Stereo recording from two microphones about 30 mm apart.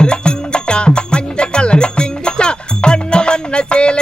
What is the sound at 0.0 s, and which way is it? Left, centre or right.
Music, left.